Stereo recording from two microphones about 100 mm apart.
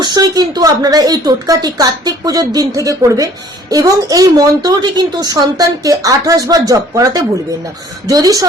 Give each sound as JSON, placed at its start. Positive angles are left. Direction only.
{"t": 0.0, "sound": "a woman's voice", "side_deg": -45}